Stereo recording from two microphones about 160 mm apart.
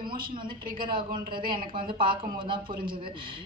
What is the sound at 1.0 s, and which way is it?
Speech, 30° right (ahead or behind).